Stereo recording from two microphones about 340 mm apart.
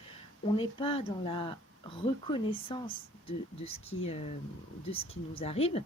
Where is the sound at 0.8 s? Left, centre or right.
Centre.